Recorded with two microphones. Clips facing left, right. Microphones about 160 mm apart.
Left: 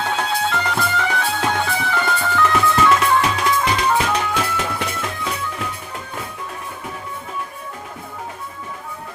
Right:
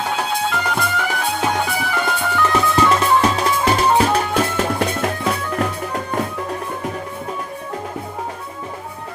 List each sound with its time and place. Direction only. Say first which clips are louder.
0.0 s music: even; 5° right (ahead or behind)
2.5 s music: right 1 dB; 20° right (ahead or behind)
3.2 s music: right 2 dB; 40° right (ahead or behind)
4.5 s music: right 5 dB; 45° right (ahead or behind)
5.0 s music: right 5 dB; 55° right (ahead or behind)